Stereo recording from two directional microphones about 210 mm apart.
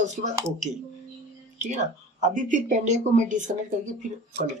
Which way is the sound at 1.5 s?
35° right (ahead or behind).